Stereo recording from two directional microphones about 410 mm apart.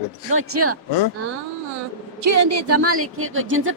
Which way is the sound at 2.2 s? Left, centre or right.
Right.